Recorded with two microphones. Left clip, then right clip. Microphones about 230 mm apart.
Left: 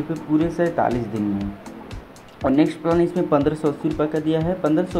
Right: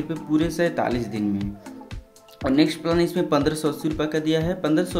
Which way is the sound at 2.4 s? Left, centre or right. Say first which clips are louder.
Left 2 dB; centre.